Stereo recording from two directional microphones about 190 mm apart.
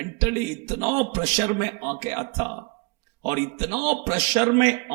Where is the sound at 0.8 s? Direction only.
35° right (ahead or behind).